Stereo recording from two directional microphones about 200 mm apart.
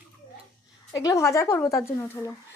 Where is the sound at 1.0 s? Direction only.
15° left (ahead or behind).